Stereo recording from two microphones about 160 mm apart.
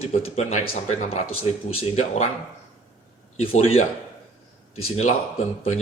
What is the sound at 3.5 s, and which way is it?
Speech, 35° left (ahead or behind).